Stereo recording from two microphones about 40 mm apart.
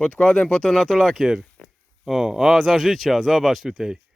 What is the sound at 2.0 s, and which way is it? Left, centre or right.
Speech, centre.